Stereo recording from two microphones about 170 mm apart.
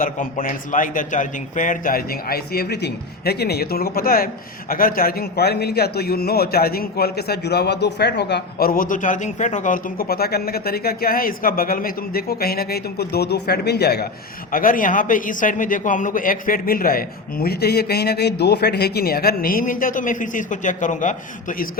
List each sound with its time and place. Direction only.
0.0 s a man's voice: 55° left (ahead or behind); by 14.1 s 70° left (ahead or behind)
14.5 s a man's voice: 55° left (ahead or behind)